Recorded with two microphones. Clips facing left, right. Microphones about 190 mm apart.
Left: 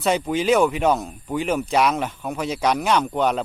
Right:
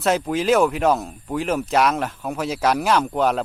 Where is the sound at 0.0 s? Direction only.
Centre (ahead or behind).